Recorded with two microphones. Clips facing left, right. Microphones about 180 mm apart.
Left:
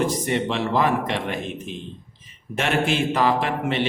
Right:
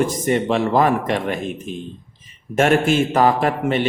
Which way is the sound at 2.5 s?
45° right (ahead or behind).